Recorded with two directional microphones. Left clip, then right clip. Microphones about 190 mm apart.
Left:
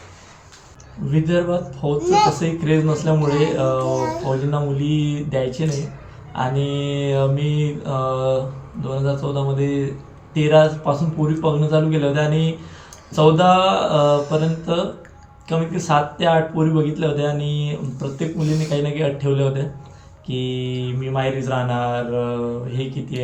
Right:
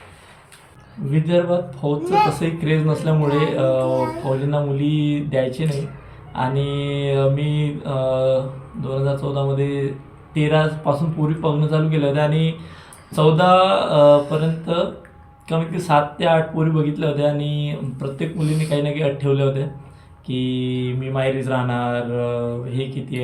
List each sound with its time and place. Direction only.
1.1 s mantra: 10° right (ahead or behind)
2.0 s speech: 25° left (ahead or behind)
2.4 s mantra: 10° right (ahead or behind)
3.2 s speech: 25° left (ahead or behind)
3.6 s mantra: 10° right (ahead or behind)